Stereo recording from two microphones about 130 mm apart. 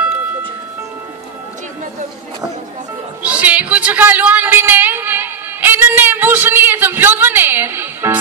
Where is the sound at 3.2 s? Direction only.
10° right (ahead or behind).